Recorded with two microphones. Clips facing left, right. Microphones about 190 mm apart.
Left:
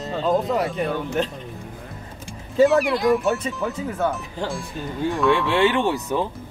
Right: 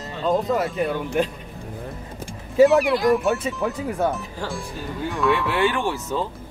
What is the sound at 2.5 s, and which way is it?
Speech, centre (ahead or behind).